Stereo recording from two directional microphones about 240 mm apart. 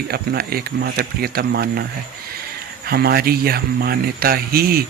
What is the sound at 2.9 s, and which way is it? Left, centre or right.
A man's voice, right.